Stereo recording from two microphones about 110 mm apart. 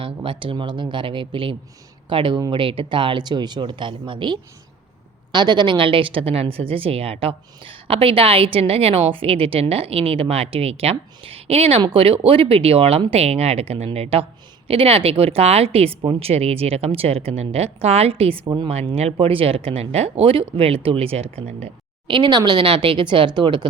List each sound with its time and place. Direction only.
0.0 s speech: 50° right (ahead or behind)
11.8 s a woman's voice: 55° right (ahead or behind)
18.4 s speech: 45° right (ahead or behind)
18.7 s a woman's voice: 70° right (ahead or behind)
19.2 s speech: 55° right (ahead or behind)
22.0 s speech: 45° right (ahead or behind)